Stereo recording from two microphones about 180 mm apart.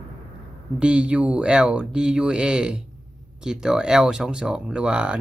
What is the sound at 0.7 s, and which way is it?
Speech, 5° right (ahead or behind).